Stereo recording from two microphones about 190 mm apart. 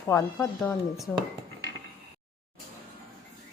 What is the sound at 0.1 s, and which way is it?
Speech, 15° left (ahead or behind).